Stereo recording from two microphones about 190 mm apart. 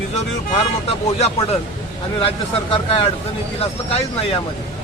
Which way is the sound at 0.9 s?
35° left (ahead or behind).